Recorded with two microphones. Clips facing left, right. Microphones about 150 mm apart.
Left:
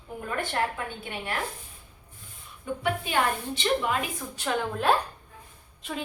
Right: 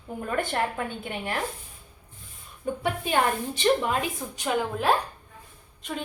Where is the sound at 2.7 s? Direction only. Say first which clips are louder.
Right 2 dB; 45° right (ahead or behind).